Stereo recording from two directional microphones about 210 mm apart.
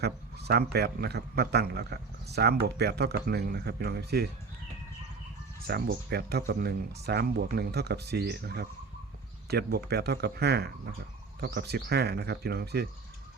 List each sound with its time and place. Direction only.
0.0 s speech: 50° right (ahead or behind)
5.6 s speech: 50° right (ahead or behind)